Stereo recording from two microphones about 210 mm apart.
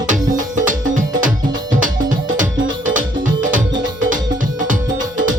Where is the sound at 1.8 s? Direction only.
40° right (ahead or behind).